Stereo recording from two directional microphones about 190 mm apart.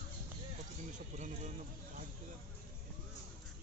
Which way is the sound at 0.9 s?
40° right (ahead or behind).